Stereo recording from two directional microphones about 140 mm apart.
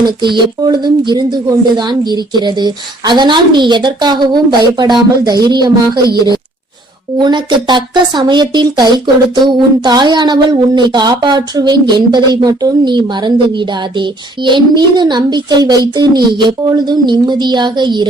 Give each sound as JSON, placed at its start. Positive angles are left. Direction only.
{"t": 0.0, "sound": "a woman's voice", "side_deg": -35}
{"t": 5.9, "sound": "a woman's voice", "side_deg": -90}
{"t": 7.2, "sound": "a woman's voice", "side_deg": -30}